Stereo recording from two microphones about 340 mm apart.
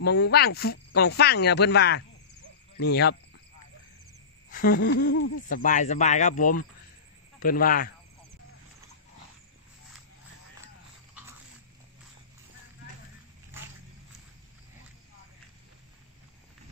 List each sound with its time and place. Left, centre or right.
0.0 s speech: left
4.5 s speech: left